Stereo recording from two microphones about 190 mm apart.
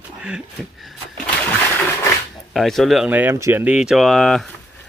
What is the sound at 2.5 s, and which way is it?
A man's voice, centre (ahead or behind).